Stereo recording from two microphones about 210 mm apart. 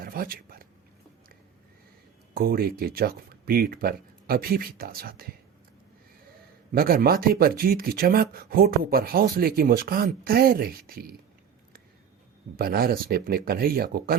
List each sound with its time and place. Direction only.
0.0 s a sound: 45° right (ahead or behind)
2.3 s speech: 45° right (ahead or behind)
6.7 s speech: 45° right (ahead or behind)
12.5 s speech: 45° right (ahead or behind)